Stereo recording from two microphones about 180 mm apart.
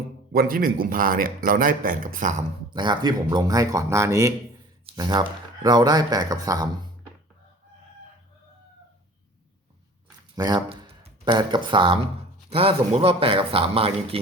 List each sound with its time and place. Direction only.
0.3 s speech: 50° right (ahead or behind)
2.6 s speech: 25° right (ahead or behind)
10.3 s a man's voice: 20° right (ahead or behind)